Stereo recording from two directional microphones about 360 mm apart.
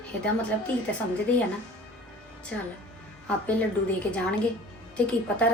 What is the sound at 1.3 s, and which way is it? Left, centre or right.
Speech, centre.